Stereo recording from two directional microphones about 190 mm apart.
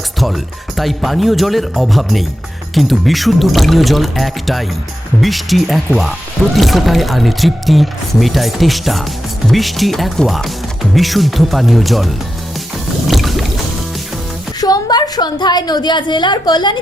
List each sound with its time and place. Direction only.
0.8 s speech: centre (ahead or behind)
13.1 s boat: centre (ahead or behind)
14.6 s a woman's voice: 20° left (ahead or behind)